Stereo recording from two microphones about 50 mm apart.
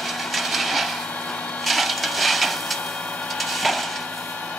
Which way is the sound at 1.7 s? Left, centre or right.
Centre.